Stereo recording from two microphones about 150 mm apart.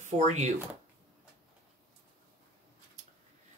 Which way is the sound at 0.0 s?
50° right (ahead or behind).